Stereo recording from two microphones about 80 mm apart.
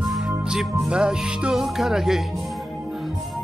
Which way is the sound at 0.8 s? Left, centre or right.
Centre.